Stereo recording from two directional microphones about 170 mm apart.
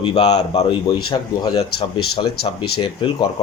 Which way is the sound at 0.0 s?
40° left (ahead or behind).